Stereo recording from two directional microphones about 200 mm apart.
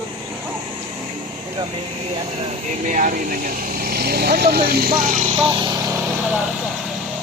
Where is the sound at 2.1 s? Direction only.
35° right (ahead or behind).